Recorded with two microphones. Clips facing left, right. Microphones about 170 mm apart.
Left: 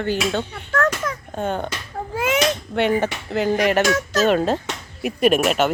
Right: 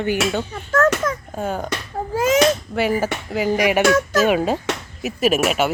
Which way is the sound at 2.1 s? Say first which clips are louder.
Right 4 dB; 40° right (ahead or behind).